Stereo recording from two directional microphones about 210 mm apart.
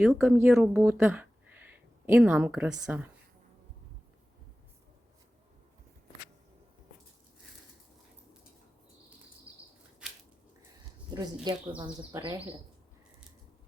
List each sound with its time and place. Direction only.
0.0 s speech: 5° right (ahead or behind)
9.5 s a sound: 5° right (ahead or behind)
11.8 s speech: 20° right (ahead or behind)